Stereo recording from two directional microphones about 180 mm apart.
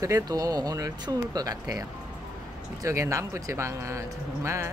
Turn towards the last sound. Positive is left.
turn(degrees=-15)  # may be behind; listen again after turning